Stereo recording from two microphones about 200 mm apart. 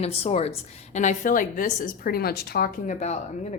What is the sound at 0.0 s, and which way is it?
Speech, 30° left (ahead or behind).